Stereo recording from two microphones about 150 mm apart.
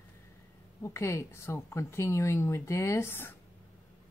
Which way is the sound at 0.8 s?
20° left (ahead or behind).